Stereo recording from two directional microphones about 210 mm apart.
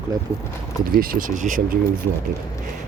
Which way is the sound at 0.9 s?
45° right (ahead or behind).